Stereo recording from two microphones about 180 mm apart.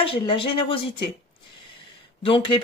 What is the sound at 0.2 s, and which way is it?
Speech, 30° left (ahead or behind).